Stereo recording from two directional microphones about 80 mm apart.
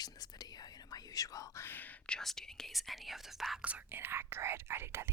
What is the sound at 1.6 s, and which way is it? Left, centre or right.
Whispering, left.